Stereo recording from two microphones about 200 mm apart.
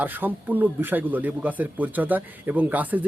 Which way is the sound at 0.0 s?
10° right (ahead or behind).